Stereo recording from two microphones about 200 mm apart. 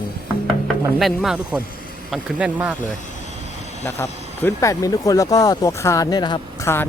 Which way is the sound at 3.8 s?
15° left (ahead or behind).